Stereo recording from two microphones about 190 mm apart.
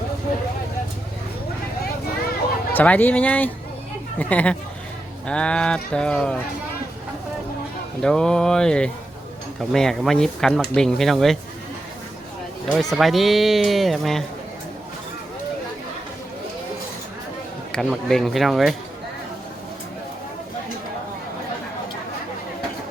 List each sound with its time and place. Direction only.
2.7 s speech: 10° left (ahead or behind)
8.0 s speech: 5° left (ahead or behind)
12.7 s speech: centre (ahead or behind)
17.7 s speech: centre (ahead or behind)